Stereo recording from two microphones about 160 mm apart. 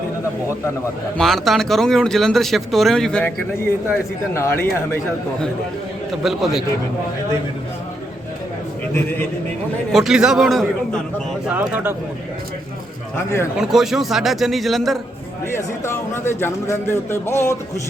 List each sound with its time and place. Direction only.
1.2 s speech: centre (ahead or behind)
4.4 s a man's voice: 15° left (ahead or behind)
6.2 s speech: centre (ahead or behind)
9.9 s speech: 5° right (ahead or behind)
11.7 s speech: 10° right (ahead or behind)
13.1 s a man's voice: 15° left (ahead or behind)
13.6 s speech: centre (ahead or behind)
15.5 s a man's voice: 15° left (ahead or behind)